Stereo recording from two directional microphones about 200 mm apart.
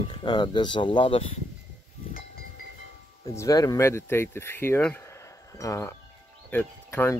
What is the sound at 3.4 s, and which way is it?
Speech, 15° left (ahead or behind).